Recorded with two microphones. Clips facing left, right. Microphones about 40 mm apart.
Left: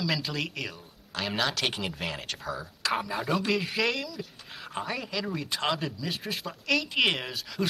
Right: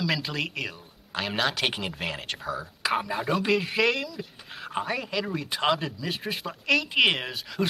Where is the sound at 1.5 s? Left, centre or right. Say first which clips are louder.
Right 2 dB; centre.